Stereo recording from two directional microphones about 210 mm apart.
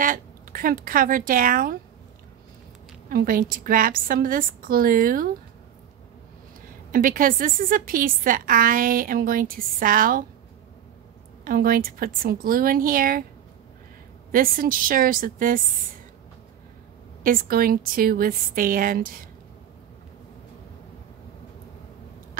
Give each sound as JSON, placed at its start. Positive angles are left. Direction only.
{"t": 0.0, "sound": "a woman's voice", "side_deg": -40}
{"t": 3.1, "sound": "a woman's voice", "side_deg": -45}
{"t": 6.9, "sound": "a woman's voice", "side_deg": -40}
{"t": 11.4, "sound": "a woman's voice", "side_deg": -45}
{"t": 14.3, "sound": "a woman's voice", "side_deg": -40}
{"t": 17.2, "sound": "a woman's voice", "side_deg": -40}